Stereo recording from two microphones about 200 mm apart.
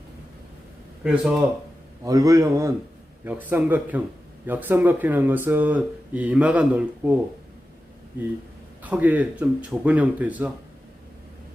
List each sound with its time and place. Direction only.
1.0 s speech: 5° right (ahead or behind)
2.0 s speech: 15° right (ahead or behind)
8.8 s speech: 10° right (ahead or behind)